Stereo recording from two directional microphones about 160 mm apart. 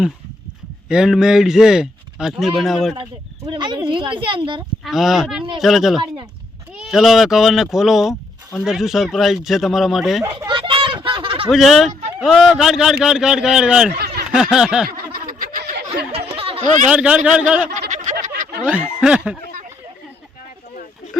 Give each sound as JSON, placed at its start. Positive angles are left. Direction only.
{"t": 0.9, "sound": "speech", "side_deg": -5}
{"t": 2.9, "sound": "speech", "side_deg": -30}
{"t": 4.8, "sound": "speech", "side_deg": 0}
{"t": 10.2, "sound": "a sound", "side_deg": -30}
{"t": 11.4, "sound": "speech", "side_deg": 0}
{"t": 14.8, "sound": "snicker", "side_deg": -65}
{"t": 16.3, "sound": "snicker", "side_deg": -35}
{"t": 16.9, "sound": "a man's voice", "side_deg": -5}
{"t": 17.7, "sound": "a sound", "side_deg": -45}
{"t": 18.6, "sound": "a man's voice", "side_deg": -10}